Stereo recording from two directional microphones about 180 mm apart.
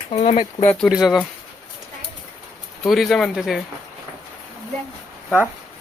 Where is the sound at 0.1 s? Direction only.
40° left (ahead or behind).